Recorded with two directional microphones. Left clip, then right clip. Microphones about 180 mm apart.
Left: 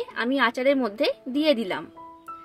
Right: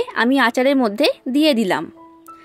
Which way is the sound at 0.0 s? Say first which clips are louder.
Right 7 dB; 45° right (ahead or behind).